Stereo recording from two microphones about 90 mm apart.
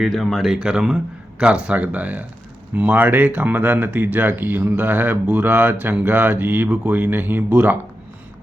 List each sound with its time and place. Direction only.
0.0 s speech: centre (ahead or behind); by 7.8 s 20° right (ahead or behind)